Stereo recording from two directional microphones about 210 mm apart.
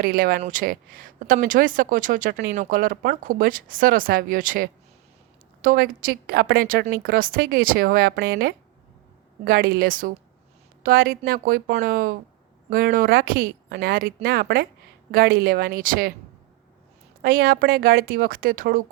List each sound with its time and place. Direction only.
0.0 s a woman's voice: 45° right (ahead or behind)
17.2 s a woman's voice: 45° right (ahead or behind)